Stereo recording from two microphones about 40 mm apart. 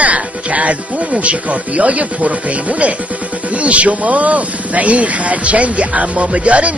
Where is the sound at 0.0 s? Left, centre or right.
Right.